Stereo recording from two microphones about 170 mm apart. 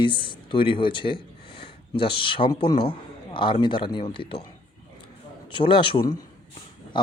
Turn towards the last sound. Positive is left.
turn(degrees=30)  # may be behind; listen again after turning